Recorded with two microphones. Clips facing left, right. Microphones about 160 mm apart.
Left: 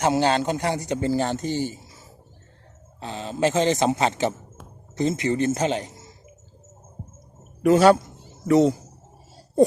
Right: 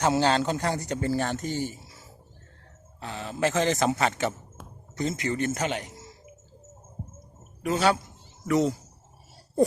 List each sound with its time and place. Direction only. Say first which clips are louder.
0.1 s a man's voice: left 2 dB; 15° left (ahead or behind)
3.0 s a man's voice: left 4 dB; 25° left (ahead or behind)
7.6 s speech: left 9 dB; 45° left (ahead or behind)
8.4 s a man's voice: left 6 dB; 30° left (ahead or behind)